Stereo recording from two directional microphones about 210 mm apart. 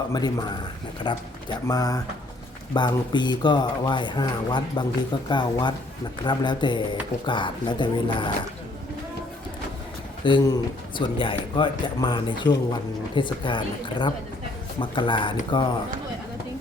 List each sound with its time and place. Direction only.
0.1 s speech: 20° left (ahead or behind)
10.2 s speech: 20° left (ahead or behind)